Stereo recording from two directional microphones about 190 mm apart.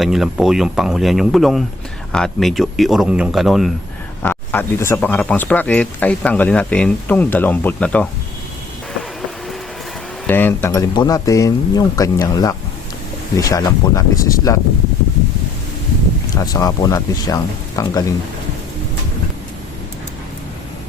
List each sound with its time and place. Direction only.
0.0 s speech: centre (ahead or behind)
4.2 s speech: 10° left (ahead or behind)
10.2 s speech: 10° left (ahead or behind)
16.3 s speech: 20° left (ahead or behind)